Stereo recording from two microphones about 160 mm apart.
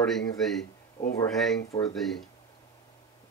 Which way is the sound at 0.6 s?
70° left (ahead or behind).